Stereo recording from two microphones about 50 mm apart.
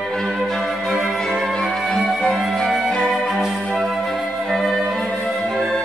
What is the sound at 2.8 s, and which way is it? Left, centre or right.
Music, centre.